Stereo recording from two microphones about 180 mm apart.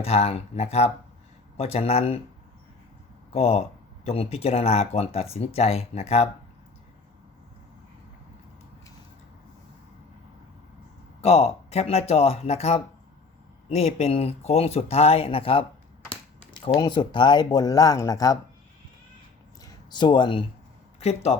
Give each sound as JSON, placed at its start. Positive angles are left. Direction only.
{"t": 0.0, "sound": "speech", "side_deg": 35}
{"t": 3.3, "sound": "speech", "side_deg": 35}
{"t": 11.2, "sound": "speech", "side_deg": 35}
{"t": 19.6, "sound": "a sound", "side_deg": 25}
{"t": 21.0, "sound": "speech", "side_deg": 35}